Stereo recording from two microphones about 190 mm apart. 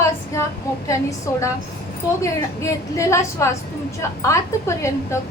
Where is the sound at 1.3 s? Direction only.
15° left (ahead or behind).